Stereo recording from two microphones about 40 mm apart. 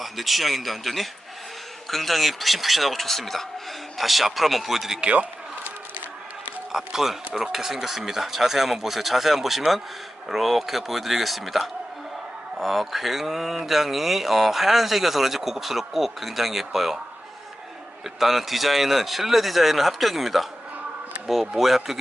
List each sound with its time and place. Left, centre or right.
0.0 s a man's voice: centre
4.9 s a man's voice: right
6.7 s speech: centre
18.2 s speech: centre
21.6 s speech: centre